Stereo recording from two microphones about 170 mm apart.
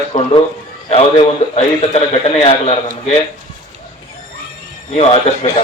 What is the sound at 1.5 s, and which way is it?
A man's voice, 35° left (ahead or behind).